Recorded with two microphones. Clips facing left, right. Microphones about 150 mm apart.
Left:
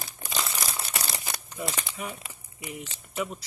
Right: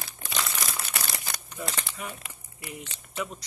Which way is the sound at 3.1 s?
5° left (ahead or behind).